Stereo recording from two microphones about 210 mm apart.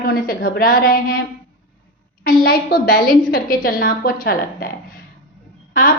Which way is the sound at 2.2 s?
45° left (ahead or behind).